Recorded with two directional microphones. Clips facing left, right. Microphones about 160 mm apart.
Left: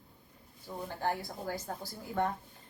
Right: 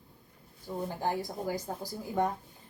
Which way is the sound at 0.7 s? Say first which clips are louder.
Right 2 dB; 15° right (ahead or behind).